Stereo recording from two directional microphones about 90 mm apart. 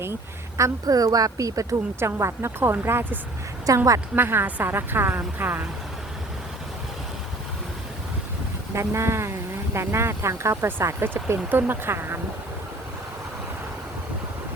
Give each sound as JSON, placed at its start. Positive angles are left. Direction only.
{"t": 0.0, "sound": "speech", "side_deg": -30}
{"t": 3.7, "sound": "speech", "side_deg": -40}
{"t": 4.1, "sound": "speech", "side_deg": -25}
{"t": 8.7, "sound": "speech", "side_deg": -30}